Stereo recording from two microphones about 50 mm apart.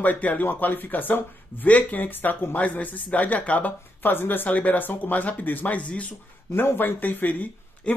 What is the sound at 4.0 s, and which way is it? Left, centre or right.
Speech, left.